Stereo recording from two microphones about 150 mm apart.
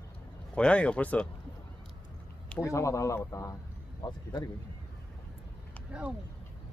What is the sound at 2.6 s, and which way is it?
Speech, 20° left (ahead or behind).